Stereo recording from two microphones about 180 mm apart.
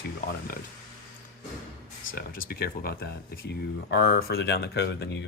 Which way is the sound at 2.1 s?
55° left (ahead or behind).